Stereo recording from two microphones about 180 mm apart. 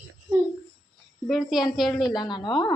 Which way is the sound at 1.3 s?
Centre (ahead or behind).